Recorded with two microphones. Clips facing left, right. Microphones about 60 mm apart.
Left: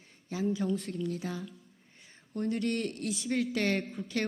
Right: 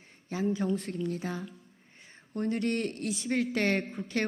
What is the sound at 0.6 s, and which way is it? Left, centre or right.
Speech, right.